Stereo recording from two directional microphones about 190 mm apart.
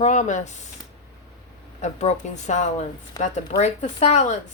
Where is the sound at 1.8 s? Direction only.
35° left (ahead or behind).